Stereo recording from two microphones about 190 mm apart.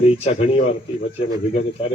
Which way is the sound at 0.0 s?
30° left (ahead or behind).